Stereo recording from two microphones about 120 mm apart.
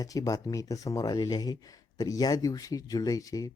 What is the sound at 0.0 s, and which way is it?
Speech, 30° left (ahead or behind).